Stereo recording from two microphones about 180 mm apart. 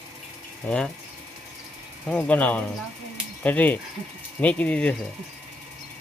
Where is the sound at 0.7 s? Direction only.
5° left (ahead or behind).